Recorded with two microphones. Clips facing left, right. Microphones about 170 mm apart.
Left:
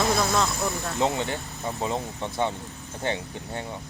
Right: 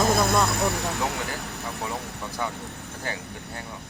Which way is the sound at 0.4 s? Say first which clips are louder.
Right 3 dB; 65° right (ahead or behind).